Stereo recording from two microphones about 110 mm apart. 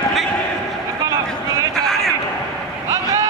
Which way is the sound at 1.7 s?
5° left (ahead or behind).